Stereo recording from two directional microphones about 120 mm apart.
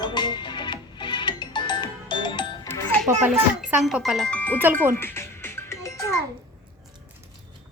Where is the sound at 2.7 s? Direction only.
20° left (ahead or behind).